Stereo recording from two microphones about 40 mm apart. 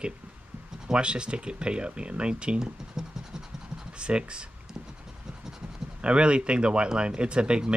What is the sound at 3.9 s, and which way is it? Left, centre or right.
Speech, right.